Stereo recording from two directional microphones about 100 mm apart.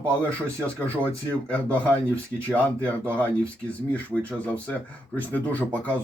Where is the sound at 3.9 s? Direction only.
15° left (ahead or behind).